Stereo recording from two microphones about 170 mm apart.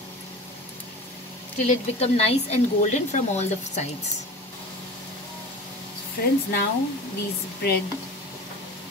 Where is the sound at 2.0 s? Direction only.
35° left (ahead or behind).